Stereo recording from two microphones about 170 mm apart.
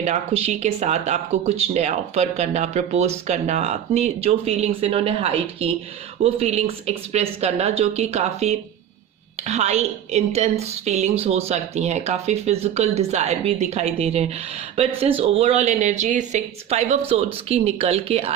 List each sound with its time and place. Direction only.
0.0 s speech: 40° right (ahead or behind)